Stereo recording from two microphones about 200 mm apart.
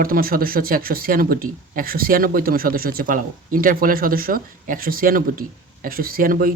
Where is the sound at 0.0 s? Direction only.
45° right (ahead or behind).